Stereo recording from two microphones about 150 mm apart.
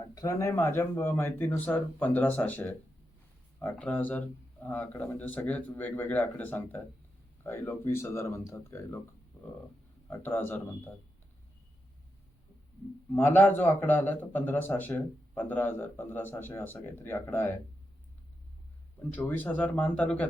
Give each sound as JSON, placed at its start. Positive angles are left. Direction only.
{"t": 0.1, "sound": "speech", "side_deg": 20}
{"t": 10.1, "sound": "speech", "side_deg": 15}
{"t": 13.1, "sound": "speech", "side_deg": 15}
{"t": 19.1, "sound": "speech", "side_deg": 10}